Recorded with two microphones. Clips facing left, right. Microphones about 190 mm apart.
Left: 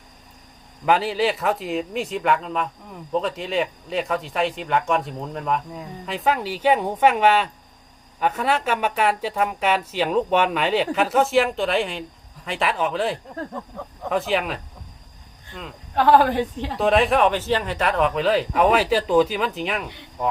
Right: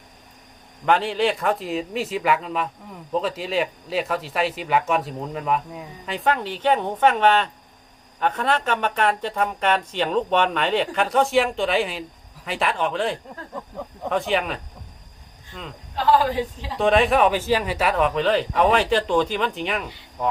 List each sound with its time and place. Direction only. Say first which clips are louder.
0.9 s speech: even; 5° left (ahead or behind)
16.0 s a woman's voice: left 3 dB; 55° left (ahead or behind)
16.7 s speech: even; centre (ahead or behind)